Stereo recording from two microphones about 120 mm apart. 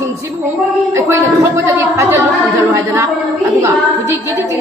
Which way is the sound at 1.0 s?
25° right (ahead or behind).